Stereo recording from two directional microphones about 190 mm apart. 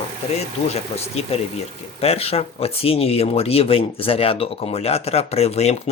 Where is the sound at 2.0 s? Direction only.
30° left (ahead or behind).